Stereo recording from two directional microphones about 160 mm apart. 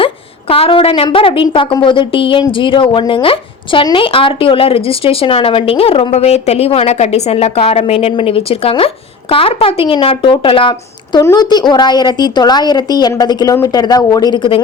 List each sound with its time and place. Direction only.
0.0 s a woman's voice: 35° left (ahead or behind)